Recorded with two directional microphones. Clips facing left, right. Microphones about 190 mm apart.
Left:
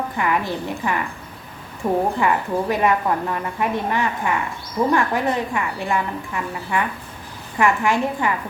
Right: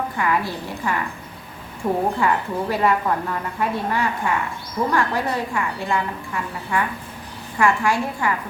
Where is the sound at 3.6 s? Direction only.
20° left (ahead or behind).